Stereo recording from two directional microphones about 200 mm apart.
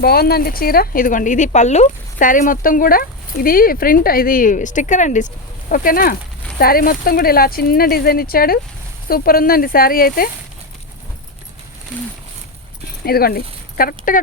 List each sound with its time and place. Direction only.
0.0 s speech: 50° left (ahead or behind)
13.1 s speech: 50° left (ahead or behind)